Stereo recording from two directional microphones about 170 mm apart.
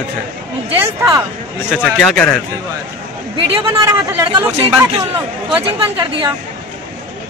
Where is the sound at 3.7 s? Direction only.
20° right (ahead or behind).